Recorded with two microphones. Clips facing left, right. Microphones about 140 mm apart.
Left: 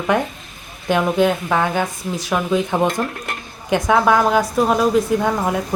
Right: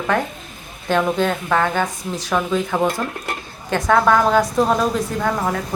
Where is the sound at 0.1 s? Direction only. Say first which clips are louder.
Left 1 dB; 15° left (ahead or behind).